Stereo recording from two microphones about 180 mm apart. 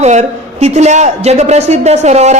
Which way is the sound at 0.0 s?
40° right (ahead or behind).